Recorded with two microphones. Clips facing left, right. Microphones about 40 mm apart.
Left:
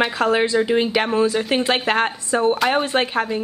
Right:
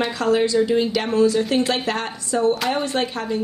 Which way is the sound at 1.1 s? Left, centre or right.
Left.